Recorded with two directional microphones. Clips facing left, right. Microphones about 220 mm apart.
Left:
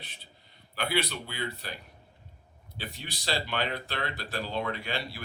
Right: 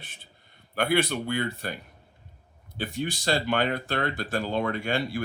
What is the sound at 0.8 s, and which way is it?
Speech, 50° right (ahead or behind).